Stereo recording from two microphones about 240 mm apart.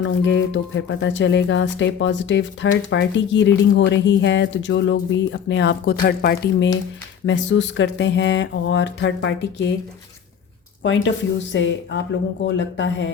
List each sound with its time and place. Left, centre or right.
0.0 s speech: left
10.8 s speech: left